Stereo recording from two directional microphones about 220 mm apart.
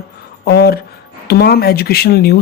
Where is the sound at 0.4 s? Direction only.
45° left (ahead or behind).